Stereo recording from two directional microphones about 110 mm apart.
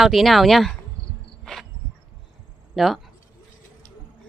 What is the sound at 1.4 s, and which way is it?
Insect, centre (ahead or behind).